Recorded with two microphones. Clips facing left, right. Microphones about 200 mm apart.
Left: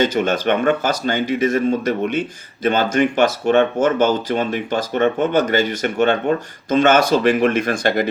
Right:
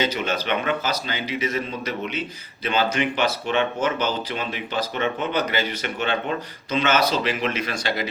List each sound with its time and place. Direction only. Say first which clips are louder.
0.0 s speech: left 7 dB; 50° left (ahead or behind)